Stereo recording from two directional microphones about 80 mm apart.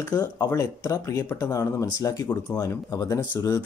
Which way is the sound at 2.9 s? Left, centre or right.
Left.